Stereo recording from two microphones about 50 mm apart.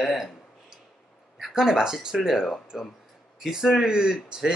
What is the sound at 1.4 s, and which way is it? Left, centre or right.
Speech, centre.